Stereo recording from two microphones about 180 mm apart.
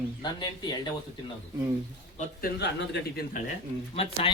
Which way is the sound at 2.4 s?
70° left (ahead or behind).